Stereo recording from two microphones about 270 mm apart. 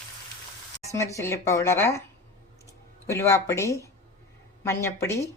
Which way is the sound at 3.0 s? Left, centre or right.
Centre.